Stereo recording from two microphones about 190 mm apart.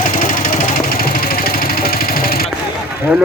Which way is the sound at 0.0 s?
45° left (ahead or behind).